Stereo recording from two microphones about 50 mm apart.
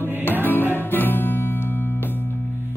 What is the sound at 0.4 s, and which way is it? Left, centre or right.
Music, left.